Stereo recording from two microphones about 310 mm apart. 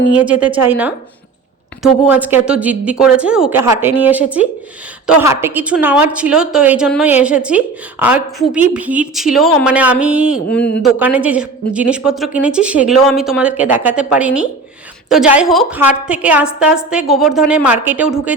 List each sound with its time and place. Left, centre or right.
0.1 s a woman's voice: centre